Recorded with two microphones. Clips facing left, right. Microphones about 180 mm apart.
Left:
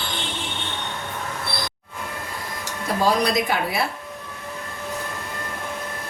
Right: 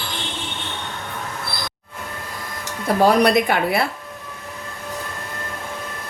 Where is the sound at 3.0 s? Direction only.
60° right (ahead or behind).